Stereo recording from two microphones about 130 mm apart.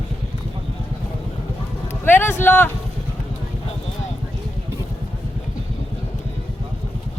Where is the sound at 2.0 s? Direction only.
15° left (ahead or behind).